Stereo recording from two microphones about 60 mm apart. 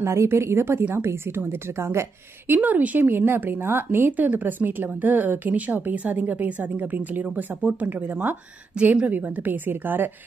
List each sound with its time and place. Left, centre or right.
0.0 s speech: right
2.4 s speech: right
8.7 s speech: right